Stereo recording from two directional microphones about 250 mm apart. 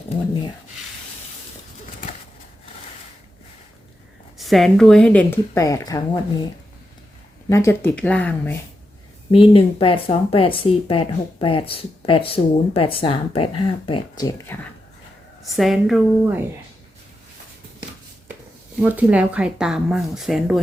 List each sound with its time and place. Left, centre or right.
4.4 s speech: centre
7.5 s speech: centre
9.3 s speech: left
15.5 s speech: centre
18.8 s speech: centre